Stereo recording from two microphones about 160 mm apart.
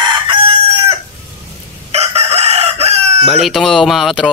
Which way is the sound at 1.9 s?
40° right (ahead or behind).